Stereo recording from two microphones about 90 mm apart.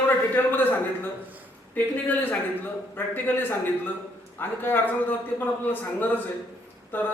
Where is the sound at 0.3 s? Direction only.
20° left (ahead or behind).